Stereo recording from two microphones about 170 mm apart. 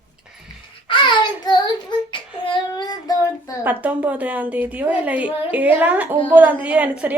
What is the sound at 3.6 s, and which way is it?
A woman's voice, 10° right (ahead or behind).